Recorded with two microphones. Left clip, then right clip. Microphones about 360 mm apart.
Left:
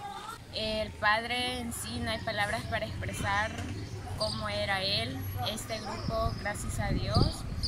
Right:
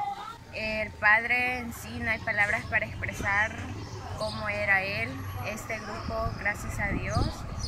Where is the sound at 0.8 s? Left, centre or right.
Centre.